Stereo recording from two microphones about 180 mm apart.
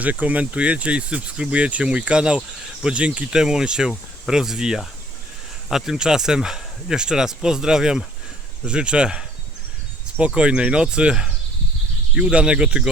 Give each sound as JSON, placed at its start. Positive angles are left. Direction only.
{"t": 0.0, "sound": "speech", "side_deg": -10}